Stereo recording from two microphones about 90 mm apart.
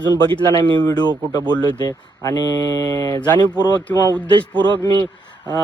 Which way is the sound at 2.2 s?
45° left (ahead or behind).